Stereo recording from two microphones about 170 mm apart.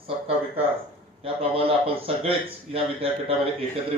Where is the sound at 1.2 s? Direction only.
35° right (ahead or behind).